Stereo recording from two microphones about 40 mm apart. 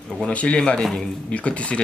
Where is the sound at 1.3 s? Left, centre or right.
Left.